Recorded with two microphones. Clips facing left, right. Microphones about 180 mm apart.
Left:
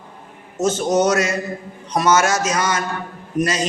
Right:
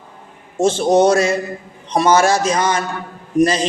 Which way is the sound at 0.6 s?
30° right (ahead or behind).